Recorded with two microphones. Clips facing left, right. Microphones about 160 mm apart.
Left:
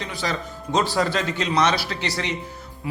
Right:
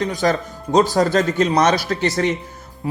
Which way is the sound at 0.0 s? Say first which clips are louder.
Right 9 dB; 45° right (ahead or behind).